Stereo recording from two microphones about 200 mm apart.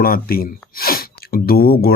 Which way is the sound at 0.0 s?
50° left (ahead or behind).